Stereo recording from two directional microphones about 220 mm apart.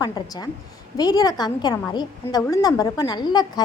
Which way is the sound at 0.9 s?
15° left (ahead or behind).